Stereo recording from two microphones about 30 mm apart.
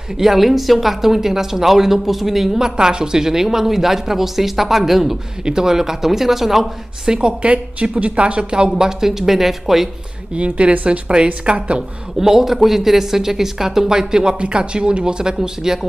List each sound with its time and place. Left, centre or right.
0.2 s speech: centre
1.1 s speech: centre
2.8 s speech: right; by 5.1 s centre
5.4 s speech: right
7.1 s speech: right
7.5 s speech: right
8.7 s speech: centre
10.3 s speech: right
12.2 s a woman's voice: centre
15.3 s speech: centre